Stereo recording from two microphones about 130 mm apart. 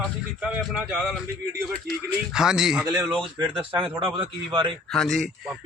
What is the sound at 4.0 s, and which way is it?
Speech, 40° right (ahead or behind).